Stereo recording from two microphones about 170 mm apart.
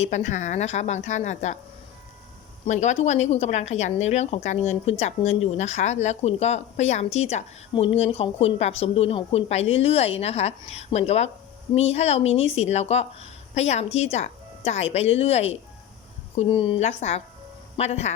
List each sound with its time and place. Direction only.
0.0 s a woman's voice: 45° left (ahead or behind)
2.6 s speech: 45° left (ahead or behind)